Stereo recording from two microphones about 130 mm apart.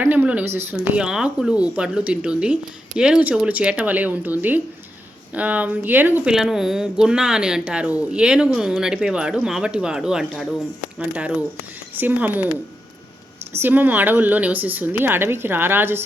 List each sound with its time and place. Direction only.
0.0 s speech: 15° right (ahead or behind)
0.8 s a woman's voice: 5° right (ahead or behind)
6.3 s a woman's voice: 5° right (ahead or behind)
13.5 s a woman's voice: 15° right (ahead or behind)